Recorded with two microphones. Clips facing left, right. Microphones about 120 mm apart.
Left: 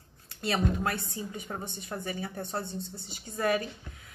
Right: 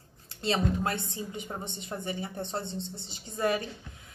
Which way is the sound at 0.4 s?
25° right (ahead or behind).